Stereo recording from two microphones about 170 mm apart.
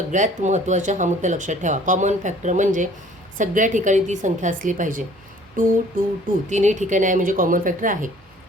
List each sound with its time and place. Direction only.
0.1 s speech: 45° right (ahead or behind)
5.6 s a sound: 55° right (ahead or behind)
6.5 s speech: 45° right (ahead or behind)